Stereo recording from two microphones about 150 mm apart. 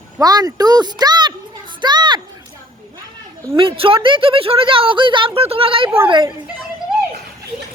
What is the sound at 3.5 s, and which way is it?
A woman's voice, 35° right (ahead or behind).